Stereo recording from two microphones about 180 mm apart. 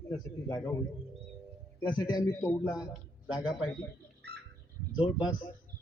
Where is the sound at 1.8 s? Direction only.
25° left (ahead or behind).